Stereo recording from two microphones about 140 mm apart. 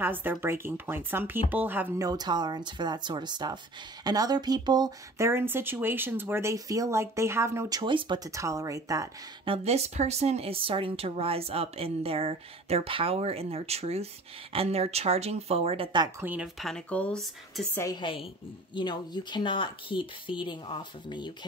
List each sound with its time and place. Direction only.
0.0 s speech: 15° right (ahead or behind)
2.0 s speech: 25° right (ahead or behind)
7.8 s speech: 35° right (ahead or behind)
8.3 s speech: 20° right (ahead or behind)
9.4 s a woman's voice: 45° right (ahead or behind)
16.2 s speech: 15° right (ahead or behind)
16.5 s speech: 5° left (ahead or behind)
18.0 s speech: 35° left (ahead or behind)